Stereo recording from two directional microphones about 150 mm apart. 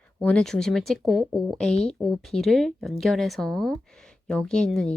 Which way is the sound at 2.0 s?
Centre (ahead or behind).